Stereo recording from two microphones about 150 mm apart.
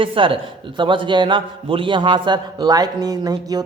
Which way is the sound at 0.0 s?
35° right (ahead or behind).